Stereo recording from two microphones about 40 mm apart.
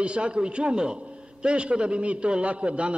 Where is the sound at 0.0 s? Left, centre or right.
Right.